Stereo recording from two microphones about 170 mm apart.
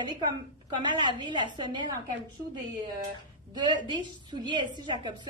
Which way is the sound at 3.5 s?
25° right (ahead or behind).